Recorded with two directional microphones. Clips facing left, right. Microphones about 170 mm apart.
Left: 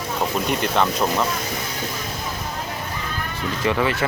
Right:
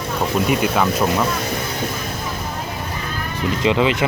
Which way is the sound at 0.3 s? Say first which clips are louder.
Right 4 dB; 5° right (ahead or behind).